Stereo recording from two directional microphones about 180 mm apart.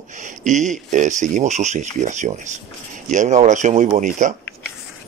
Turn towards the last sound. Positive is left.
turn(degrees=-45)  # may be behind; listen again after turning